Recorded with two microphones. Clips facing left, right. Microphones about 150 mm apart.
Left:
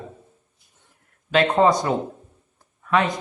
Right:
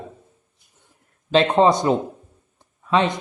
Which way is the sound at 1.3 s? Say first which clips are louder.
Right 2 dB; 25° right (ahead or behind).